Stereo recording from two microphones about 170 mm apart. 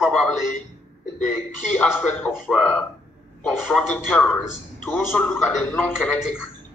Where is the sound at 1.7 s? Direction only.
10° left (ahead or behind).